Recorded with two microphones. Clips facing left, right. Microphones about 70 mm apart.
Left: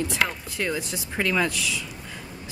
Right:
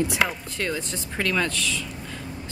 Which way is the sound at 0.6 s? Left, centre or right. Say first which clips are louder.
Left 1 dB; centre.